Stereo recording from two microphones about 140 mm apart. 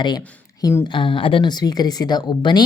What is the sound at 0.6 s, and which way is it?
Speech, 15° left (ahead or behind).